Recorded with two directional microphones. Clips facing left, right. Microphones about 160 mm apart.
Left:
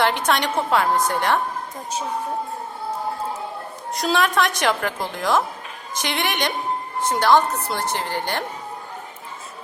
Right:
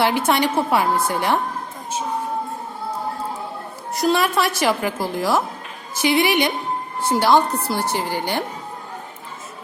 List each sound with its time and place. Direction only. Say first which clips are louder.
0.0 s a woman's voice: right 2 dB; 10° right (ahead or behind)
3.9 s a woman's voice: right 2 dB; 5° right (ahead or behind)